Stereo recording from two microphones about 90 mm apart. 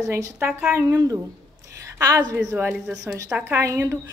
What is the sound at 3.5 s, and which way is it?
Speech, 25° right (ahead or behind).